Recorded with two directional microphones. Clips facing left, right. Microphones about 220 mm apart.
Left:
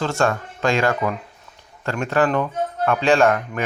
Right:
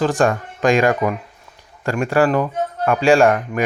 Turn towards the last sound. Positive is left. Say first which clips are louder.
# right 3 dB
turn(degrees=-15)  # may be behind; listen again after turning